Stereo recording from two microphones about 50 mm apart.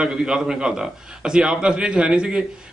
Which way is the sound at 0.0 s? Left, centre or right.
Centre.